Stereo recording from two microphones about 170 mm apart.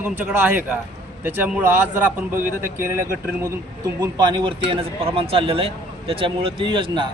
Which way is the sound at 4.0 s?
25° right (ahead or behind).